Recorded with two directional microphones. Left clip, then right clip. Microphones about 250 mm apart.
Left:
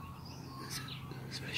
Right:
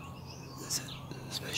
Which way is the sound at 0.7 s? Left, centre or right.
Centre.